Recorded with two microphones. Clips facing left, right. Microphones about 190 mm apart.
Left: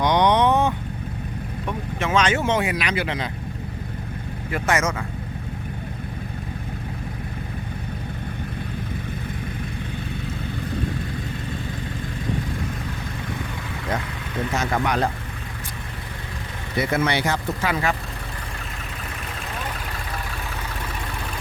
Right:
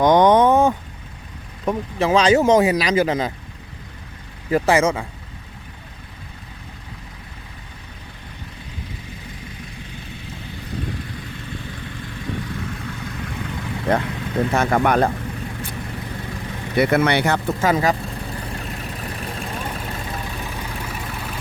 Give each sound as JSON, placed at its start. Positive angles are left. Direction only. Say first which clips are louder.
{"t": 0.0, "sound": "vehicle", "louder": "right 5 dB", "side_deg": -50}
{"t": 1.6, "sound": "speech", "louder": "right 7 dB", "side_deg": -35}
{"t": 4.5, "sound": "speech", "louder": "right 6 dB", "side_deg": -30}
{"t": 13.9, "sound": "speech", "louder": "right 8 dB", "side_deg": -60}
{"t": 16.7, "sound": "speech", "louder": "right 5 dB", "side_deg": -65}